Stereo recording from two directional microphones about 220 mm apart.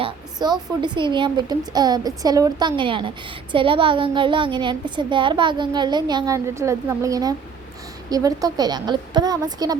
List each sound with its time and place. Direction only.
0.0 s a woman's voice: 20° right (ahead or behind)